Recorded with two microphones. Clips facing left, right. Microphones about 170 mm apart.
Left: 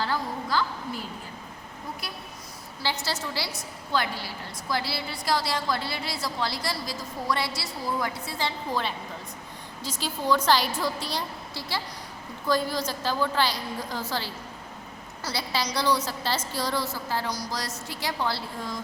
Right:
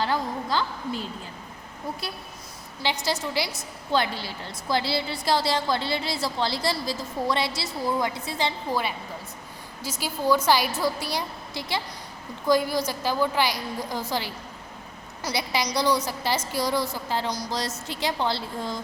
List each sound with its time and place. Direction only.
0.0 s a woman's voice: 20° right (ahead or behind)
2.8 s a woman's voice: 15° right (ahead or behind)
10.0 s a woman's voice: 10° right (ahead or behind); by 18.8 s 25° right (ahead or behind)